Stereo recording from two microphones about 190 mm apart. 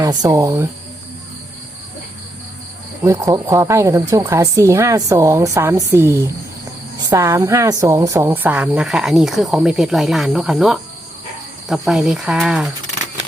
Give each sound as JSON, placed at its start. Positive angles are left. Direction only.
{"t": 0.0, "sound": "speech", "side_deg": -20}
{"t": 3.0, "sound": "a woman's voice", "side_deg": -15}